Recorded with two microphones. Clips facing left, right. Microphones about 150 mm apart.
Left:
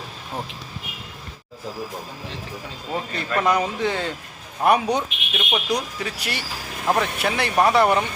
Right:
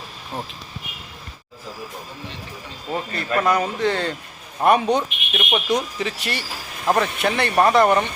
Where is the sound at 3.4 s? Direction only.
15° left (ahead or behind).